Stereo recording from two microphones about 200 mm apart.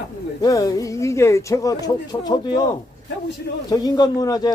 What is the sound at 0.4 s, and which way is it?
Speech, 15° left (ahead or behind).